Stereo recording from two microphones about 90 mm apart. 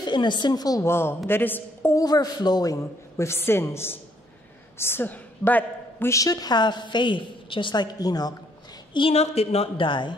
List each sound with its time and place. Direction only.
0.0 s a woman's voice: 55° left (ahead or behind)
0.8 s a man's voice: 25° left (ahead or behind)
2.0 s a man's voice: 45° left (ahead or behind); by 6.0 s 20° left (ahead or behind)
6.0 s a woman's voice: 40° left (ahead or behind)
8.9 s a woman's voice: 75° left (ahead or behind)